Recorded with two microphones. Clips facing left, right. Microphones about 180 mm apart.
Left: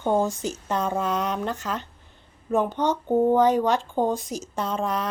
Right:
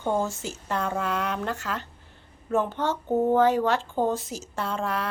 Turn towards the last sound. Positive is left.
turn(degrees=20)  # may be behind; listen again after turning